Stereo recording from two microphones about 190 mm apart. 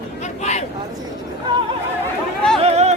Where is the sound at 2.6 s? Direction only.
35° right (ahead or behind).